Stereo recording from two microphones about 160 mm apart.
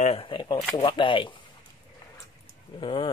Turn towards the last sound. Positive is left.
turn(degrees=30)  # may be behind; listen again after turning